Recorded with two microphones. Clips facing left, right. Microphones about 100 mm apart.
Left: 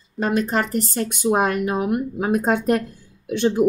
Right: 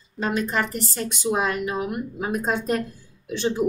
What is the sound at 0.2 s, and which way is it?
A woman's voice, 45° left (ahead or behind).